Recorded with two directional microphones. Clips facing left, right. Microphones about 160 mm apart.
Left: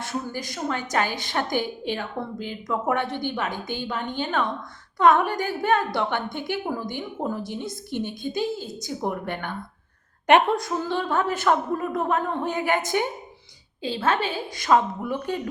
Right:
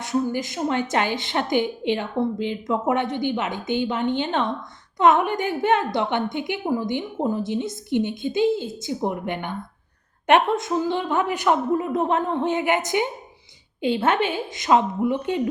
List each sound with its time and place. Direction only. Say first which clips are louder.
0.0 s a woman's voice: right 7 dB; 15° right (ahead or behind)
10.2 s a woman's voice: even; centre (ahead or behind)
10.6 s a woman's voice: right 3 dB; 15° right (ahead or behind)